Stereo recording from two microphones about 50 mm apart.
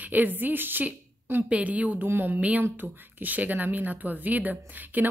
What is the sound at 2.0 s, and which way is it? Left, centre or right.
Speech, right.